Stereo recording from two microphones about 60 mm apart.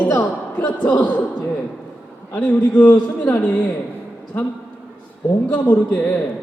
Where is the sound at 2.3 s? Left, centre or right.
Left.